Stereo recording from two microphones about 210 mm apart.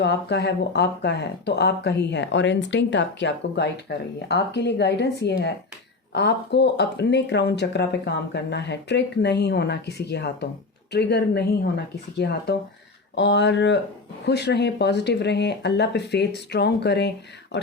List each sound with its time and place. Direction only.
0.0 s speech: 55° left (ahead or behind)